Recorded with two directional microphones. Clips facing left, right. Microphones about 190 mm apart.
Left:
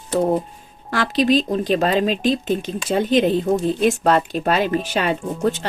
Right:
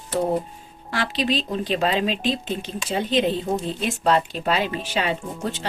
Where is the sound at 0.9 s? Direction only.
45° left (ahead or behind).